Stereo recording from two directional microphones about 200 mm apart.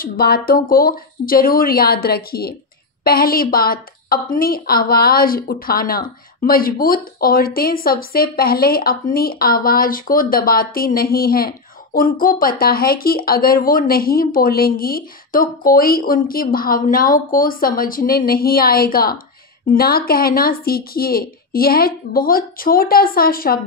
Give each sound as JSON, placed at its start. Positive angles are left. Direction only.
{"t": 0.0, "sound": "a woman's voice", "side_deg": 50}